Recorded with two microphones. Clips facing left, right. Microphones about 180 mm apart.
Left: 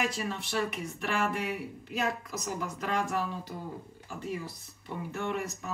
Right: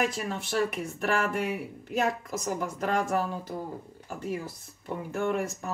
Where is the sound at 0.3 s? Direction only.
50° right (ahead or behind).